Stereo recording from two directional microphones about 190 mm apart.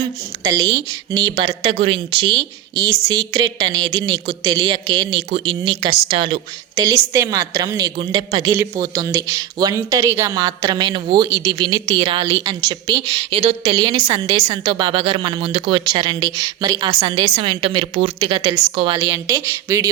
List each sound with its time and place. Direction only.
0.0 s a woman's voice: 20° right (ahead or behind)
10.3 s a woman's voice: 25° right (ahead or behind)